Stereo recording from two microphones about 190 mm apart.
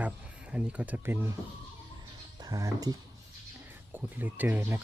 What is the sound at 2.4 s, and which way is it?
Speech, 20° right (ahead or behind).